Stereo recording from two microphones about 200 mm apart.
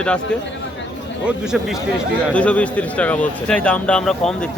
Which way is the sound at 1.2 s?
5° right (ahead or behind).